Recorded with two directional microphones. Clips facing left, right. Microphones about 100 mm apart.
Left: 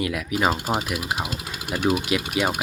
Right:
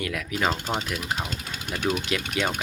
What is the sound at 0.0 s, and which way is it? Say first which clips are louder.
Speech: left 4 dB; 15° left (ahead or behind).